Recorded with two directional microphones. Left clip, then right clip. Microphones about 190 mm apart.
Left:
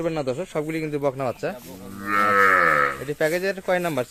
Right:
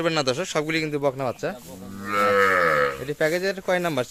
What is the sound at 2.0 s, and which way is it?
Livestock, 65° right (ahead or behind).